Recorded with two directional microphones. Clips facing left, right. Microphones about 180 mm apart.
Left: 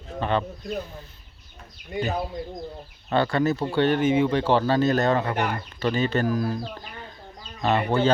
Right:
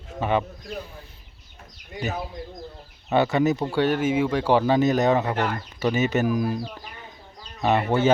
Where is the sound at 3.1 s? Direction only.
15° right (ahead or behind).